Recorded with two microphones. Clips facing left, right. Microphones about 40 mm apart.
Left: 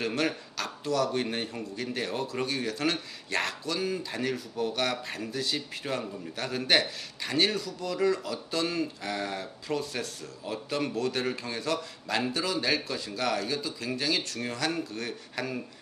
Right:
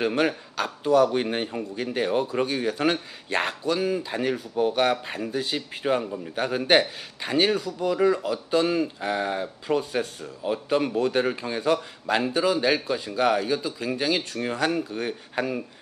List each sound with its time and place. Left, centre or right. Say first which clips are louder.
0.0 s a man's voice: right 6 dB; right